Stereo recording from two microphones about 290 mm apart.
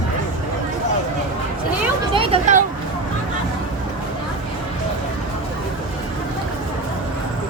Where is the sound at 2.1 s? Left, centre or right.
Right.